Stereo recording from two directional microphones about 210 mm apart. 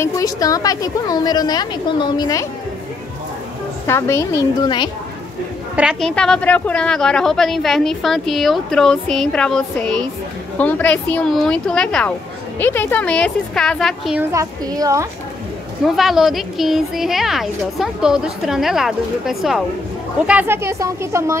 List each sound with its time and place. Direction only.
0.0 s a woman's voice: 15° left (ahead or behind)
3.8 s a woman's voice: 15° left (ahead or behind)
5.8 s speech: centre (ahead or behind)
14.3 s speech: 15° right (ahead or behind)
15.8 s speech: centre (ahead or behind)